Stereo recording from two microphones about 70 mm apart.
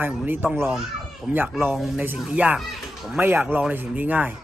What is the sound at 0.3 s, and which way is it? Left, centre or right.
Speech, right.